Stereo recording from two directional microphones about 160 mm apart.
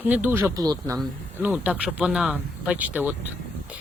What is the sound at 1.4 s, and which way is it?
Speech, 10° right (ahead or behind).